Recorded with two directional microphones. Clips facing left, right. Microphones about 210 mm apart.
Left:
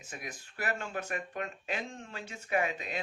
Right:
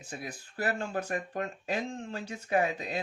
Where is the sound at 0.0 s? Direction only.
30° right (ahead or behind).